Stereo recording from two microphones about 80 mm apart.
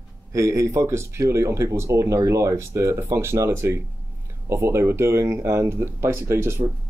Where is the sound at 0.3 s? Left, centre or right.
Right.